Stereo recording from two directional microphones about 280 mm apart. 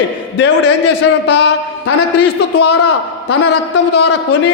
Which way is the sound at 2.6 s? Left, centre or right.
Left.